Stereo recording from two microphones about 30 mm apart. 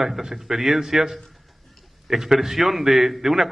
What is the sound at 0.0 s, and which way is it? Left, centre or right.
A man's voice, centre.